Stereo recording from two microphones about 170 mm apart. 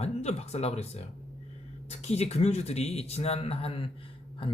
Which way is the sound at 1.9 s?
40° left (ahead or behind).